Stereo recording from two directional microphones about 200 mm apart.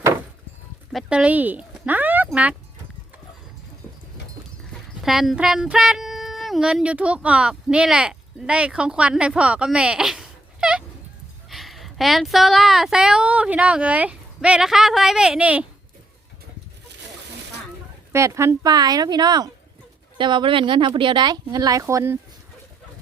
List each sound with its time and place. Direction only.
0.9 s speech: 5° right (ahead or behind)
4.9 s female singing: centre (ahead or behind)
11.4 s speech: centre (ahead or behind)
18.1 s speech: 15° right (ahead or behind)